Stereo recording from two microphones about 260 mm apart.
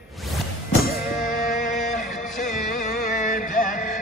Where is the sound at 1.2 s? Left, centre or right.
Left.